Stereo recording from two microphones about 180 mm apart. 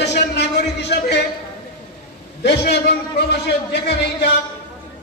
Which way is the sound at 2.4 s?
70° left (ahead or behind).